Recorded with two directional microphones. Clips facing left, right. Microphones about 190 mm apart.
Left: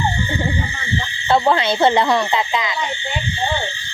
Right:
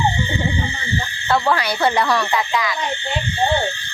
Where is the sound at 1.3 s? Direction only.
25° left (ahead or behind).